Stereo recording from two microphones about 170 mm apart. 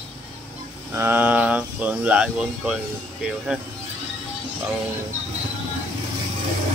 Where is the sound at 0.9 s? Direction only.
10° right (ahead or behind).